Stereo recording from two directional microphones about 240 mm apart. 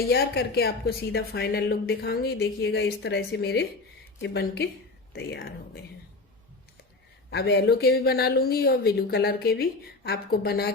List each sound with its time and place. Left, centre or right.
0.0 s speech: left
7.3 s speech: left